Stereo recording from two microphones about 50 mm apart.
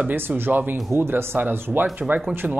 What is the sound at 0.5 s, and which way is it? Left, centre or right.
Speech, right.